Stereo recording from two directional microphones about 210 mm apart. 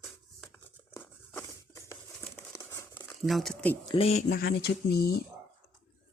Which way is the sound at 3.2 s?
Centre (ahead or behind).